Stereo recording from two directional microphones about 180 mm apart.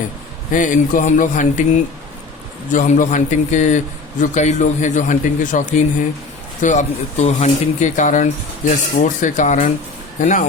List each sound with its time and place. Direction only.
0.5 s speech: 45° left (ahead or behind)